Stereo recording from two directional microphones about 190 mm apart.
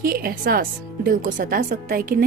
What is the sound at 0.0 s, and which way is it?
Speech, 50° right (ahead or behind).